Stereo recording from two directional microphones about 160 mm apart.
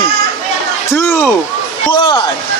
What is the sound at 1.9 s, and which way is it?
Speech, 30° left (ahead or behind).